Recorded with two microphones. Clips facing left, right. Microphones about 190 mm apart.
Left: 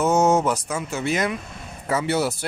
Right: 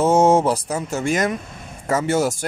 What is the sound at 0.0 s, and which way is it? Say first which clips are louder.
Speech: right 3 dB; 30° right (ahead or behind).